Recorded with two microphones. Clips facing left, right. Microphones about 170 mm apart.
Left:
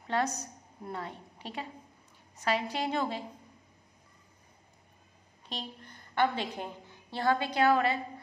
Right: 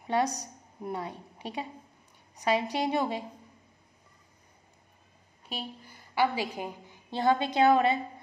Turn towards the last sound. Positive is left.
turn(degrees=-20)  # may be behind; listen again after turning